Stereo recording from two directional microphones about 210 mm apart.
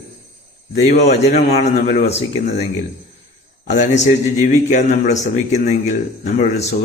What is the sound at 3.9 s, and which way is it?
Speech, 35° left (ahead or behind).